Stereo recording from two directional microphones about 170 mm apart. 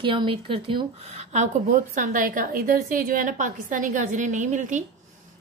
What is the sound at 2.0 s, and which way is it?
A woman's voice, 50° right (ahead or behind).